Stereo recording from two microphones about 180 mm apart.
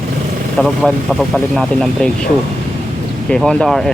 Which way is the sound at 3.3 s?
5° left (ahead or behind).